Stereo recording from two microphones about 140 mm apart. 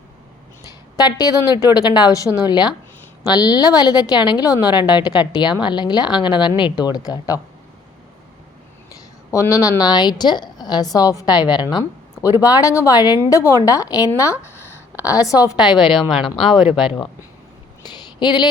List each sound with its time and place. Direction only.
0.9 s speech: 30° left (ahead or behind)
8.9 s a woman's voice: 25° left (ahead or behind)
15.5 s a woman's voice: 5° right (ahead or behind)
17.8 s a sound: 30° left (ahead or behind)